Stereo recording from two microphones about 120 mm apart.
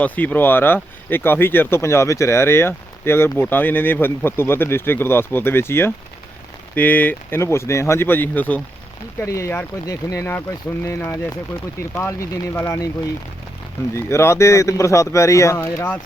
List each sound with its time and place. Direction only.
0.0 s speech: 15° left (ahead or behind)
9.2 s speech: 25° left (ahead or behind)
10.8 s speech: 15° left (ahead or behind)
13.9 s speech: 20° left (ahead or behind)